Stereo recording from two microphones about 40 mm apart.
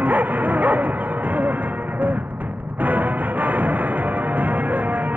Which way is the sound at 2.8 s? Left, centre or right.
Right.